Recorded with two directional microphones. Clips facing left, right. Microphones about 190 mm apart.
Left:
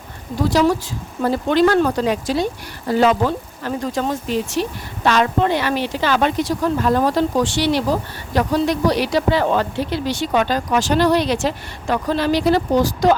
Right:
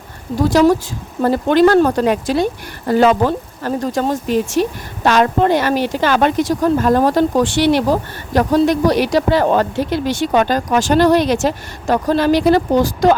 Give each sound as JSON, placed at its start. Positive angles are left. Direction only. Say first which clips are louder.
{"t": 0.5, "sound": "a woman's voice", "louder": "right 5 dB", "side_deg": -45}